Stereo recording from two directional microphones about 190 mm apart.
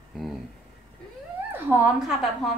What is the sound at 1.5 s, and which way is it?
Speech, 10° right (ahead or behind).